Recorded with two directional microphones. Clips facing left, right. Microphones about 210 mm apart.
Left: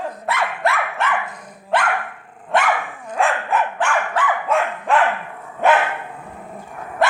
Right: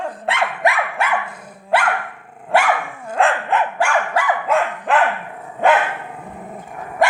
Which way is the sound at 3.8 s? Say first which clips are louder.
Right 2 dB; 10° right (ahead or behind).